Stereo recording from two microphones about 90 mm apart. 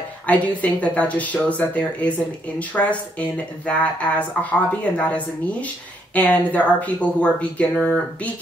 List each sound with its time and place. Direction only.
0.3 s speech: 15° left (ahead or behind)